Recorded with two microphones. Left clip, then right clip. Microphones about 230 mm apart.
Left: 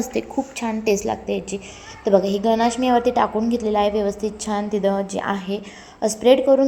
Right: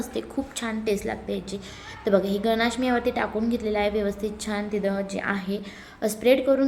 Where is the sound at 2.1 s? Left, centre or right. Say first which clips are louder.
Left 5 dB; centre.